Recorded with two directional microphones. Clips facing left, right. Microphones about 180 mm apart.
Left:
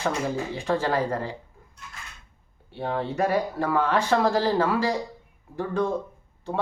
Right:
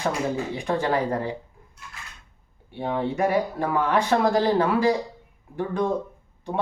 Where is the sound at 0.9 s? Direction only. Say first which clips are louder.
Right 2 dB; 15° right (ahead or behind).